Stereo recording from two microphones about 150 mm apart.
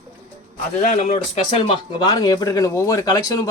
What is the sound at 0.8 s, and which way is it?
Speech, 50° left (ahead or behind).